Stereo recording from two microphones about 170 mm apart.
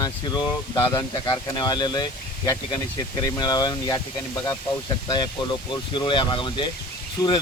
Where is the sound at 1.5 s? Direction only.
25° left (ahead or behind).